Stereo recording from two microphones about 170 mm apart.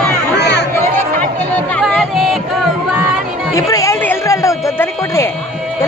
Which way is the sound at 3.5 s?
20° left (ahead or behind).